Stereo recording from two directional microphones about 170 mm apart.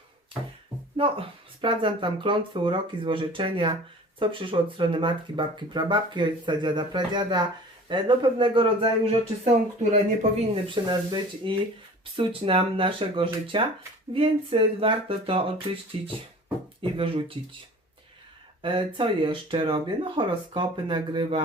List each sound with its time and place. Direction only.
0.9 s speech: 30° right (ahead or behind)
10.5 s speech: 25° right (ahead or behind)
18.6 s speech: 30° right (ahead or behind)